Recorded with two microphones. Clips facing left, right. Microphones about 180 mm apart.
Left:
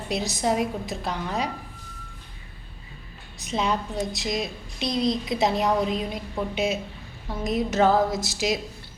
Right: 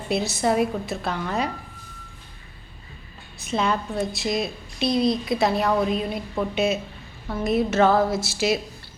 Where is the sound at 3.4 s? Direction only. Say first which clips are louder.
Right 2 dB; 15° left (ahead or behind).